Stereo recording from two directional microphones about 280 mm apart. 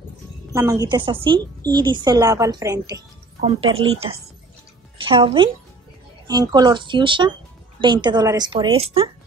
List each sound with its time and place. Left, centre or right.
0.5 s a woman's voice: centre
5.0 s a woman's voice: centre